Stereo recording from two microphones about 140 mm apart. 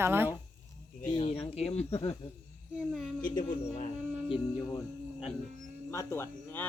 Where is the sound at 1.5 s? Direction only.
50° left (ahead or behind).